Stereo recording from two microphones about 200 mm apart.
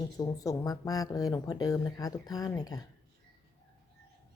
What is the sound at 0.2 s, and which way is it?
Speech, 15° left (ahead or behind).